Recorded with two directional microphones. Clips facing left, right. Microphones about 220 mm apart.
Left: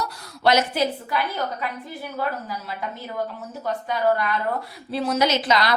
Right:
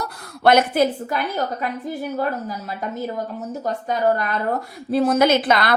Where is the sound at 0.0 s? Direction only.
55° right (ahead or behind).